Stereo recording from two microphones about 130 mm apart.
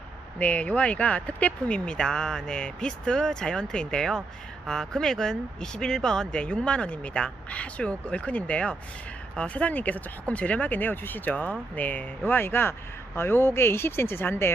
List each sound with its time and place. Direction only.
0.3 s speech: 10° left (ahead or behind)